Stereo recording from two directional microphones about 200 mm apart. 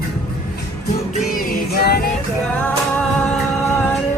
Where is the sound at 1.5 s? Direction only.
50° left (ahead or behind).